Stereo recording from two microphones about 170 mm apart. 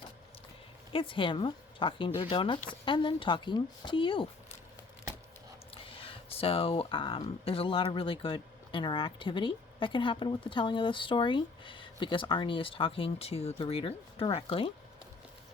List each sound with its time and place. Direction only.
0.9 s speech: 30° left (ahead or behind)
5.9 s a sound: 35° left (ahead or behind)
7.2 s speech: 35° left (ahead or behind)